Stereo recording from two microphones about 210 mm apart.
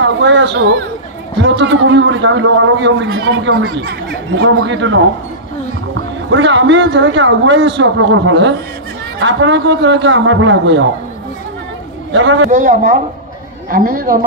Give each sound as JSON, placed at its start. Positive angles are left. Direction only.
{"t": 0.0, "sound": "a man's voice", "side_deg": -60}
{"t": 6.3, "sound": "a man's voice", "side_deg": -60}
{"t": 12.1, "sound": "a man's voice", "side_deg": -65}
{"t": 12.4, "sound": "speech", "side_deg": -40}